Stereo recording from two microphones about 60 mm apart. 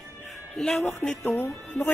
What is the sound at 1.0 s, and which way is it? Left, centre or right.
Speech, left.